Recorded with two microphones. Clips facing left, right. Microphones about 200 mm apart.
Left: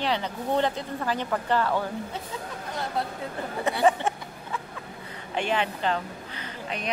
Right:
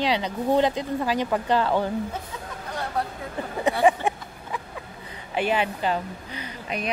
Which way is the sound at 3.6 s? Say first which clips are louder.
Right 3 dB; 15° right (ahead or behind).